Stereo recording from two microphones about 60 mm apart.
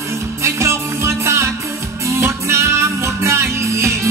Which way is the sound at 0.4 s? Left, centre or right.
Right.